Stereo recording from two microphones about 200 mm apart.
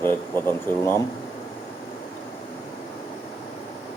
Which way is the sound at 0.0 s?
10° left (ahead or behind).